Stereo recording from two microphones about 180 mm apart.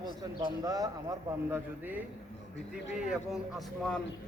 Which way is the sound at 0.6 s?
20° right (ahead or behind).